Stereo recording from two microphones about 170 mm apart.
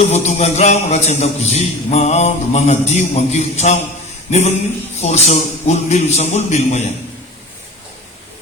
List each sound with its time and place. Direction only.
0.1 s a man's voice: 40° left (ahead or behind)